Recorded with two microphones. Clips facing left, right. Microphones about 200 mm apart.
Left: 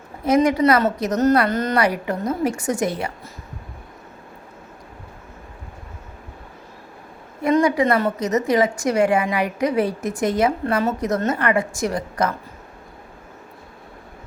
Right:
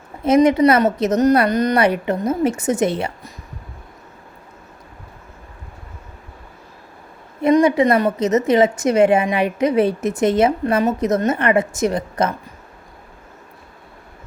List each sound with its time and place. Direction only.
0.3 s a woman's voice: 25° right (ahead or behind)
7.4 s a woman's voice: 25° right (ahead or behind)